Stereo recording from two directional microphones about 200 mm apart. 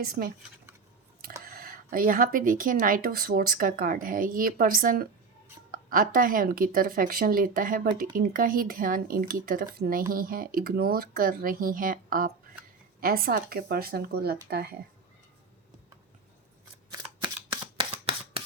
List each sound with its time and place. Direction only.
0.0 s speech: 45° right (ahead or behind)
1.5 s speech: 45° right (ahead or behind)
16.9 s camera: 20° right (ahead or behind)